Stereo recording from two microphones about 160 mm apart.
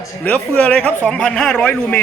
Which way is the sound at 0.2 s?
10° left (ahead or behind).